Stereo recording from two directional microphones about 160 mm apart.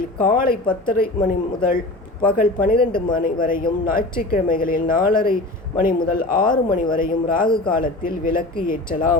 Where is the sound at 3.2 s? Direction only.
60° left (ahead or behind).